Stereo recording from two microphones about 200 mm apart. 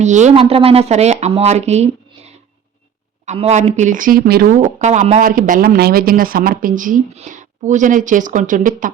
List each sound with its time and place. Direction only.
0.0 s speech: 35° right (ahead or behind)